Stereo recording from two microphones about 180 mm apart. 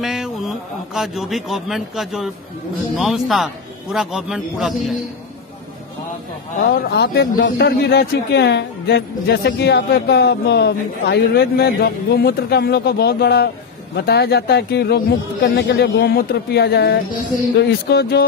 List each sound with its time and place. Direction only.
0.0 s a man's voice: centre (ahead or behind)
6.7 s speech: 60° left (ahead or behind)